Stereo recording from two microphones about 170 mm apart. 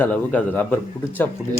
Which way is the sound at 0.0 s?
10° left (ahead or behind).